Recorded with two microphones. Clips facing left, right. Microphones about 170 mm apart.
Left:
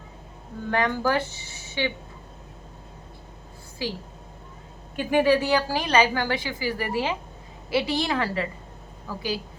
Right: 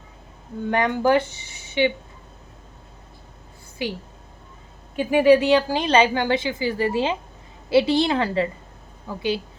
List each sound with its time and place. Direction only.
0.7 s a woman's voice: 20° right (ahead or behind)
4.9 s a woman's voice: 15° right (ahead or behind)